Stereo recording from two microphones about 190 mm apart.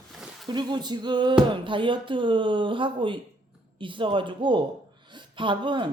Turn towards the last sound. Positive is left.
turn(degrees=-25)  # may be behind; listen again after turning